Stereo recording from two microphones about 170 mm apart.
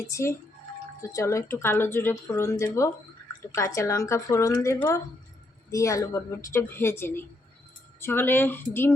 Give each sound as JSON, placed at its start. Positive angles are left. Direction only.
{"t": 0.1, "sound": "speech", "side_deg": 15}